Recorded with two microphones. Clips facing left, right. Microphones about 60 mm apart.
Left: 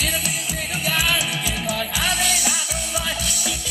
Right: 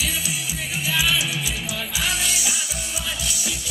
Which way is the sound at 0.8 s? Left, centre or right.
Left.